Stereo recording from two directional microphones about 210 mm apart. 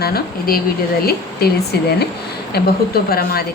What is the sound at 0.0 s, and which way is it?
A woman's voice, 45° left (ahead or behind).